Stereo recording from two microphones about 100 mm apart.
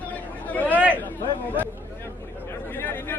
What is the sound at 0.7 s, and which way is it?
Speech, 15° right (ahead or behind).